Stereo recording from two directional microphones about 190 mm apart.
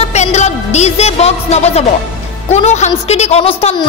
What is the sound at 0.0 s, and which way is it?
Music, 35° left (ahead or behind).